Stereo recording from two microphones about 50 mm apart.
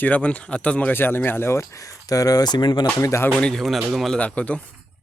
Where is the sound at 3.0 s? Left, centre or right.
Left.